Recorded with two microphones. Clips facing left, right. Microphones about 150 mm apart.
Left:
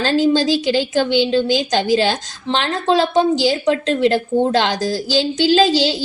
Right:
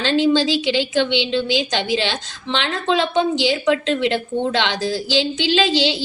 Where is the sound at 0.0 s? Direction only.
40° left (ahead or behind).